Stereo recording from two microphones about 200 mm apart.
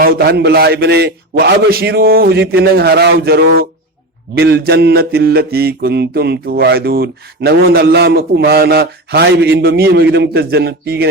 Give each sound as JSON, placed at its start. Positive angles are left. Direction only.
{"t": 0.0, "sound": "mantra", "side_deg": -50}